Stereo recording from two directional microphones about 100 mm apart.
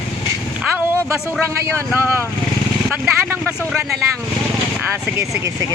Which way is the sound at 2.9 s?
15° right (ahead or behind).